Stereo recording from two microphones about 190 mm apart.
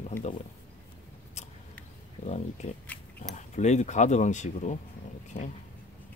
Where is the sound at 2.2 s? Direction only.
35° left (ahead or behind).